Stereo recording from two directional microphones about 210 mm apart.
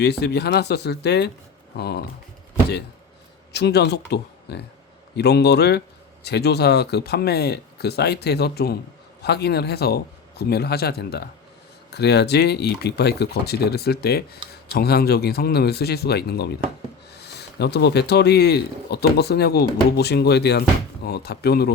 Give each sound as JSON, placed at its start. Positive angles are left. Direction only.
{"t": 0.0, "sound": "speech", "side_deg": 50}
{"t": 3.5, "sound": "speech", "side_deg": 50}